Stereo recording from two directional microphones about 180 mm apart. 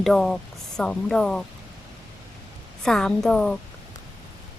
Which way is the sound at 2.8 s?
5° left (ahead or behind).